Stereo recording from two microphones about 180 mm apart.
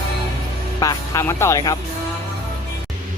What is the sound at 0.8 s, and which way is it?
Speech, 20° left (ahead or behind).